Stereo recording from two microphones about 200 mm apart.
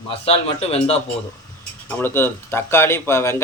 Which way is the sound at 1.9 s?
10° left (ahead or behind).